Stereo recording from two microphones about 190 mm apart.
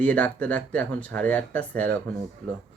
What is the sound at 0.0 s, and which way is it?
Speech, 5° left (ahead or behind).